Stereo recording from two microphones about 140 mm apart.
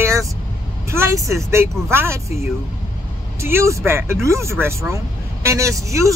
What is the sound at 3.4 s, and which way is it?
Speech, 20° right (ahead or behind).